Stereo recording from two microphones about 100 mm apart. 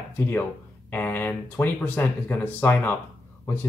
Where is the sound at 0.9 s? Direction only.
20° left (ahead or behind).